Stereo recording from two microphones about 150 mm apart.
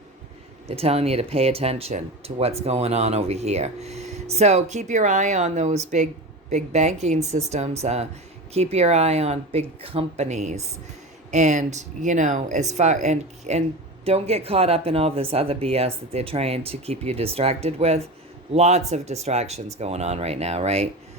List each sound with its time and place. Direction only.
0.8 s speech: 40° right (ahead or behind)